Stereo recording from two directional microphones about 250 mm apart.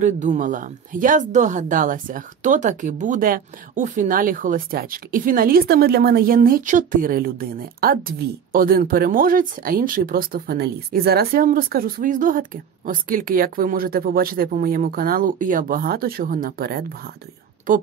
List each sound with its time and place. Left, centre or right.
0.0 s speech: right